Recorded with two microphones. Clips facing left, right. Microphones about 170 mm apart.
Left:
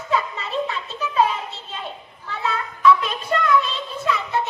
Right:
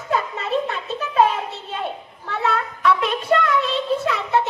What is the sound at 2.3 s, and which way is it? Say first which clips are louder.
Child singing: right 4 dB; 65° right (ahead or behind).